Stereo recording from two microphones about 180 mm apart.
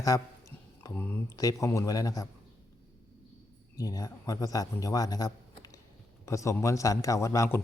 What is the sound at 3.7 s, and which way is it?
A man's voice, 20° left (ahead or behind).